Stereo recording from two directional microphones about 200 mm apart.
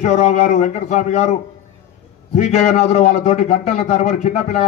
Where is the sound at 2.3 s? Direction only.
35° left (ahead or behind).